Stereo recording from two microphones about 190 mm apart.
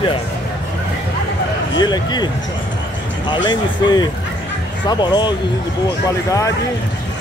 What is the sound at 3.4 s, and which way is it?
Speech, 20° left (ahead or behind).